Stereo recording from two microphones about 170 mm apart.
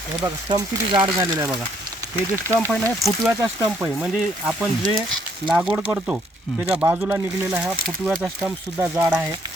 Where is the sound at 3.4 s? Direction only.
10° right (ahead or behind).